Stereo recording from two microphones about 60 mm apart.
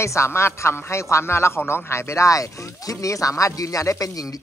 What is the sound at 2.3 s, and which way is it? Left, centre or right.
Speech, left.